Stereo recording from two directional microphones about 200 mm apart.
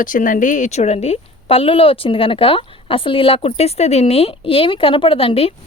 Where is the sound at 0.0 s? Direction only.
40° left (ahead or behind).